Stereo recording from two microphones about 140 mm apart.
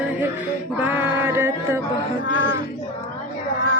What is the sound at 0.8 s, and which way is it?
Mantra, 15° right (ahead or behind).